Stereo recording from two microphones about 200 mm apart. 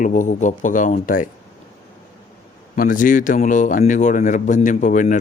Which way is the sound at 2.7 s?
40° left (ahead or behind).